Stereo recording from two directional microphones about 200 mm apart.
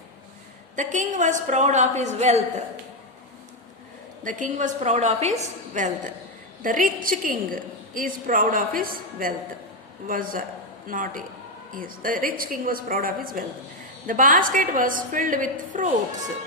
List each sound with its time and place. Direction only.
0.8 s a woman's voice: 40° right (ahead or behind)
4.2 s a woman's voice: 40° right (ahead or behind)